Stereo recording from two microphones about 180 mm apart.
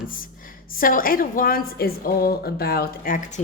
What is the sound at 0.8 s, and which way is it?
A woman's voice, 50° left (ahead or behind).